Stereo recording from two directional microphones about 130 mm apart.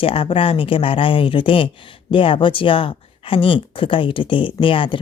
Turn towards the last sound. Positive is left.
turn(degrees=40)  # may be behind; listen again after turning